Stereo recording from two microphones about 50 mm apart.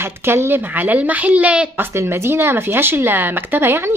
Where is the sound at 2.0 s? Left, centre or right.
Right.